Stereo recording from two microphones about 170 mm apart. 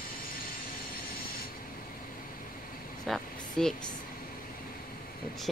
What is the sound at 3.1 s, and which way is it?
Speech, 5° left (ahead or behind).